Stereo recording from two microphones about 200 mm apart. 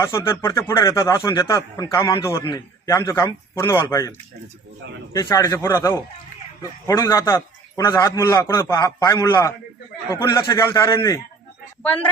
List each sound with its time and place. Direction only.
0.0 s speech: 15° left (ahead or behind)
5.1 s speech: 15° left (ahead or behind)